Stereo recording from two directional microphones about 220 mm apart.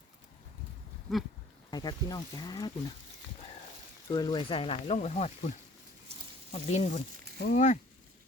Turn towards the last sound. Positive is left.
turn(degrees=35)  # may be behind; listen again after turning